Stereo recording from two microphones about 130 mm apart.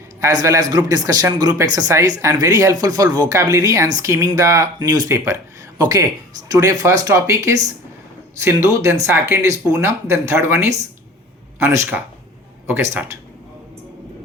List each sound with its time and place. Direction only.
0.2 s speech: 25° right (ahead or behind)